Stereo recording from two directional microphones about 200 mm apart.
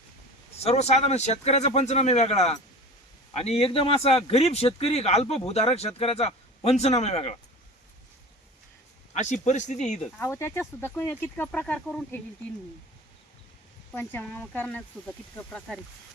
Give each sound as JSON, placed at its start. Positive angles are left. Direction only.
{"t": 0.6, "sound": "speech", "side_deg": 30}
{"t": 9.1, "sound": "speech", "side_deg": 35}
{"t": 10.2, "sound": "speech", "side_deg": 10}
{"t": 13.9, "sound": "speech", "side_deg": 10}